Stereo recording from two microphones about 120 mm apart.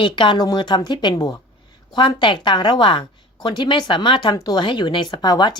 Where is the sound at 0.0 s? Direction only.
40° left (ahead or behind).